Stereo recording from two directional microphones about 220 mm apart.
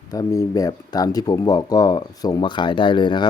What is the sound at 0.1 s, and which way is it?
Speech, 15° left (ahead or behind).